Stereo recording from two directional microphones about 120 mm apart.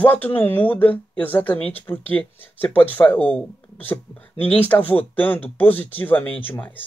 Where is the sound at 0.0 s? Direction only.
15° left (ahead or behind).